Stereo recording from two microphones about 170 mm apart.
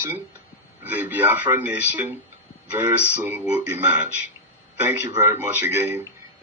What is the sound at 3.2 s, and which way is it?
Speech, 10° right (ahead or behind).